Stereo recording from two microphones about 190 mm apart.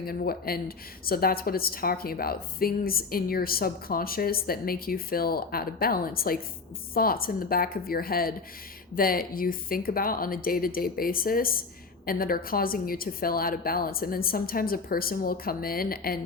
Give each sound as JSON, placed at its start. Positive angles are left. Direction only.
{"t": 0.0, "sound": "a woman's voice", "side_deg": 50}